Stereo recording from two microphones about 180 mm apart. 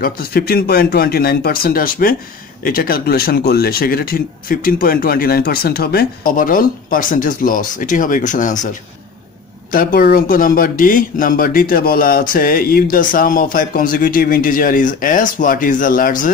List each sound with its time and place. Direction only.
0.0 s speech: 55° left (ahead or behind)
9.7 s speech: 50° left (ahead or behind)